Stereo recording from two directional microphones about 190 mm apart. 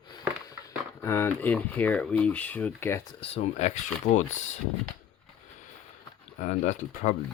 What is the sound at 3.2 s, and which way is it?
Speech, 35° left (ahead or behind).